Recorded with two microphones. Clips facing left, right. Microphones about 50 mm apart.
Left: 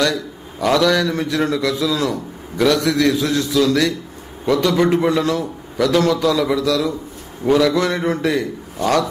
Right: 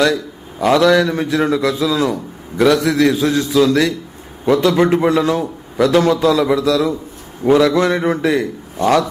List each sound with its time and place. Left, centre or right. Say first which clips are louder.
0.7 s a man's voice: right 4 dB; centre
3.2 s a man's voice: right 3 dB; right